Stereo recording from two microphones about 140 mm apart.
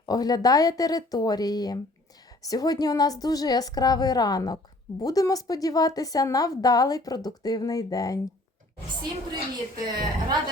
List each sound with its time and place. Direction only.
0.0 s a woman's voice: 30° left (ahead or behind)
9.8 s a woman's voice: 30° right (ahead or behind)